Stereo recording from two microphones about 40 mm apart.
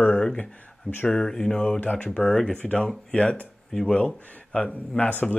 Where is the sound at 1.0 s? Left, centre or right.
Centre.